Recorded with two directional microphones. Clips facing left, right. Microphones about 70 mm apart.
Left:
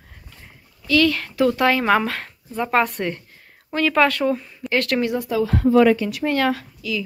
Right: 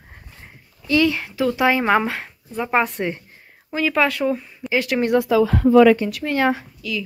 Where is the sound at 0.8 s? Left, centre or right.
Centre.